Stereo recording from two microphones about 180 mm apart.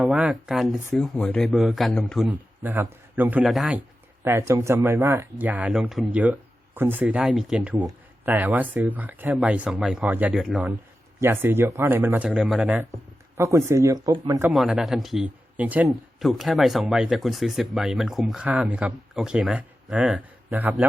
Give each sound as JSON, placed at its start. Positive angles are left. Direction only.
{"t": 0.0, "sound": "speech", "side_deg": -5}
{"t": 2.3, "sound": "a man's voice", "side_deg": -10}
{"t": 14.4, "sound": "speech", "side_deg": -5}